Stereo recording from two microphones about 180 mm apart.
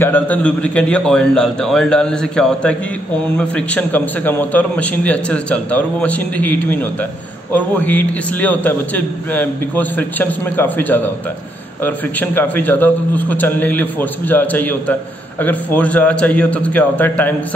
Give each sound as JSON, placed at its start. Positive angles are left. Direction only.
{"t": 0.0, "sound": "a man's voice", "side_deg": 10}